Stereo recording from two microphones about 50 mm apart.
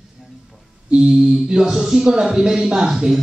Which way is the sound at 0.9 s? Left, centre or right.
Centre.